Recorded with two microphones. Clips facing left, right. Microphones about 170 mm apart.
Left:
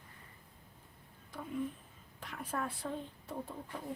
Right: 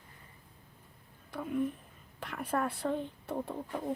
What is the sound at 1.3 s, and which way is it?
A woman's voice, 65° right (ahead or behind).